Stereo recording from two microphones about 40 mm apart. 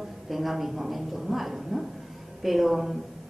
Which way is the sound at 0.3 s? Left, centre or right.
Centre.